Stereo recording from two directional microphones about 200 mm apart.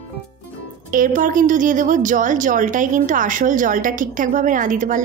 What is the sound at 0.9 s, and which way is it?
Speech, 40° right (ahead or behind).